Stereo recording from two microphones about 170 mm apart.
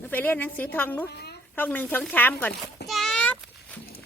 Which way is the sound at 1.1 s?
75° left (ahead or behind).